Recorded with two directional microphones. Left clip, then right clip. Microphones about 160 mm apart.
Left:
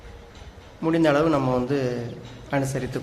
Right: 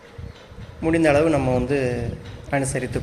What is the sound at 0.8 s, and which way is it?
Speech, 15° right (ahead or behind).